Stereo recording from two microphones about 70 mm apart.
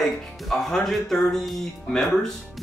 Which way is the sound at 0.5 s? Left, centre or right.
Centre.